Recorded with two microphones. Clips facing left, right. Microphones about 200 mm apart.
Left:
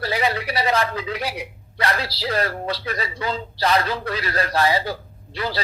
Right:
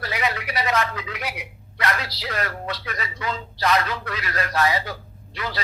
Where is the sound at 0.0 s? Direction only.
30° left (ahead or behind).